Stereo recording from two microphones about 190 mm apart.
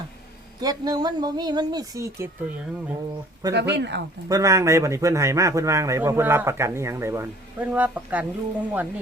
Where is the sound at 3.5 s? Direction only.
65° right (ahead or behind).